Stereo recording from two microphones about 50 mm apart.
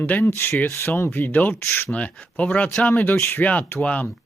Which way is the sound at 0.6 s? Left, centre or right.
Left.